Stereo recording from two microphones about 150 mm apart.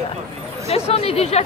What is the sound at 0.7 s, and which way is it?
Speech, 40° left (ahead or behind).